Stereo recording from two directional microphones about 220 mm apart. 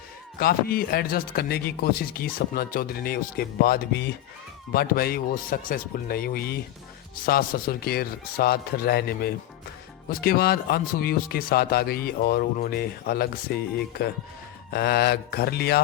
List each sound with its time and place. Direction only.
0.3 s speech: 45° left (ahead or behind)
14.7 s speech: 45° left (ahead or behind)